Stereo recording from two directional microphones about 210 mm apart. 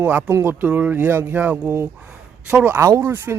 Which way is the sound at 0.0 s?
10° right (ahead or behind).